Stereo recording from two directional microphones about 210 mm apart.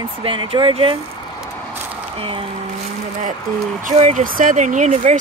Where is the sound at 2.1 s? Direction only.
25° right (ahead or behind).